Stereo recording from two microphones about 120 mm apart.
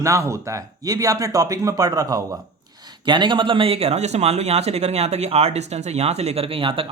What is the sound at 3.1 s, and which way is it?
Speech, 40° right (ahead or behind).